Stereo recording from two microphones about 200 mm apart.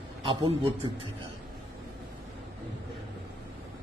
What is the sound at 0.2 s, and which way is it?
Speech, 25° right (ahead or behind).